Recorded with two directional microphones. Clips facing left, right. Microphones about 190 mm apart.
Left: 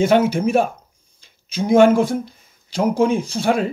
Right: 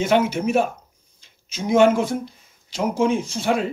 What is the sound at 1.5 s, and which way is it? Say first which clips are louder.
Speech: left 3 dB; 55° left (ahead or behind).